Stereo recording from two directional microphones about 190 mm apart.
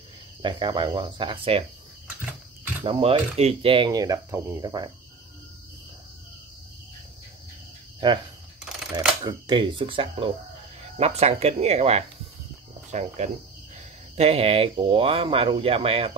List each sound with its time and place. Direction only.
0.4 s speech: 25° right (ahead or behind)
2.8 s speech: 30° right (ahead or behind)
8.0 s speech: 20° right (ahead or behind)
9.2 s speech: 25° right (ahead or behind)